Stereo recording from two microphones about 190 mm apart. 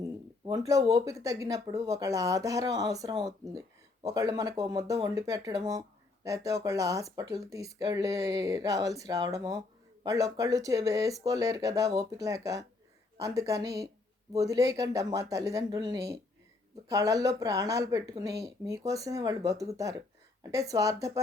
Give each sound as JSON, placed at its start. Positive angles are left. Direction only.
{"t": 0.0, "sound": "speech", "side_deg": -20}